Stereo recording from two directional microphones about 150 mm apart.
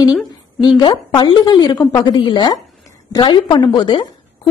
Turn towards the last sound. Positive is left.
turn(degrees=30)  # may be behind; listen again after turning